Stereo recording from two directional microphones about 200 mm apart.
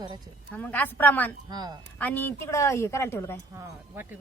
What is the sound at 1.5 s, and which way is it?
Speech, 20° right (ahead or behind).